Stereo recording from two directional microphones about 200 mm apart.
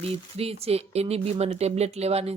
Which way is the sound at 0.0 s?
30° right (ahead or behind).